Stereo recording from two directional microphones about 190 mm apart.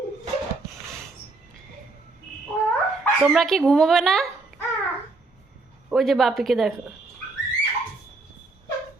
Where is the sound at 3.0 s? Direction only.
Centre (ahead or behind).